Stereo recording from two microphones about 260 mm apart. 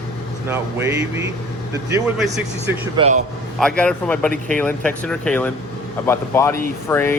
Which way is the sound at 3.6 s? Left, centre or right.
Centre.